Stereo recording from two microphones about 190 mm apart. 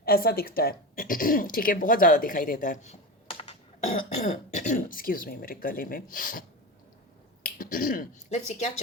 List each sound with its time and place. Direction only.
0.0 s speech: 55° left (ahead or behind)
7.4 s speech: 50° left (ahead or behind)